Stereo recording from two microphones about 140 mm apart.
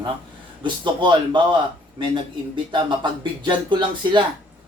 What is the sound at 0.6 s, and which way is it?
Speech, 35° right (ahead or behind).